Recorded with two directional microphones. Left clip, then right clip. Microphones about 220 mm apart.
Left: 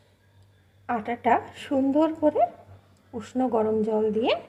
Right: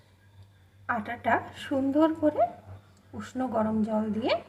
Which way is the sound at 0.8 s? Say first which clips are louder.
Left 4 dB; 20° left (ahead or behind).